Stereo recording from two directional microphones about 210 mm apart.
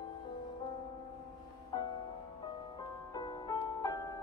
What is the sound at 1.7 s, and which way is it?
Music, 20° left (ahead or behind).